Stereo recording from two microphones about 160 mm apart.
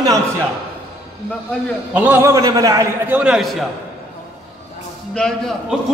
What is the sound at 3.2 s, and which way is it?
Speech, 5° right (ahead or behind).